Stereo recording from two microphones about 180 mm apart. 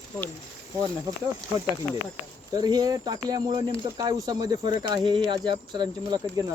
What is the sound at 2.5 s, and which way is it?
Speech, 20° right (ahead or behind).